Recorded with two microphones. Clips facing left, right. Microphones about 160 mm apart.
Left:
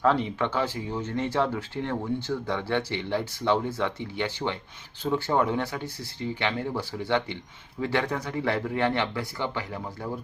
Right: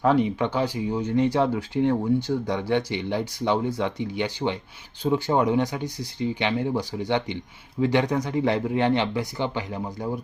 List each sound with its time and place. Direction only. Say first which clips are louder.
0.0 s speech: right 3 dB; 15° right (ahead or behind)